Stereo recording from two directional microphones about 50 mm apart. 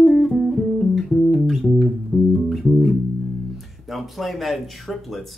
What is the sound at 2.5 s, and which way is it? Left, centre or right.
Bass guitar, centre.